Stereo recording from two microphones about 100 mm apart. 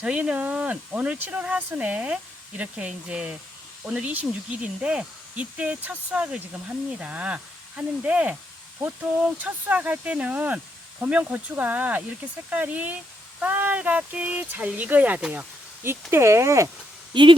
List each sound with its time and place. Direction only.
0.0 s speech: 10° right (ahead or behind)
15.8 s speech: 25° right (ahead or behind)
17.1 s speech: 50° right (ahead or behind)